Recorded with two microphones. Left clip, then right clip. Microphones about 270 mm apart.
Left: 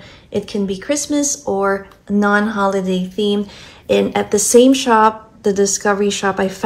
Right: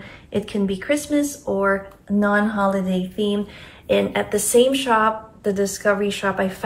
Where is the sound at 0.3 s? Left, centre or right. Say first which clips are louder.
Left 3 dB; centre.